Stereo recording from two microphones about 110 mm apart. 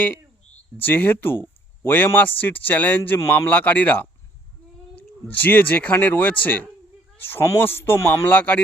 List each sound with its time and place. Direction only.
0.8 s speech: 15° left (ahead or behind)
5.3 s a man's voice: 15° left (ahead or behind)